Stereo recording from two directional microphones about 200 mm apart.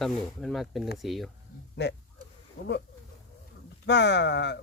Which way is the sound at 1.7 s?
60° left (ahead or behind).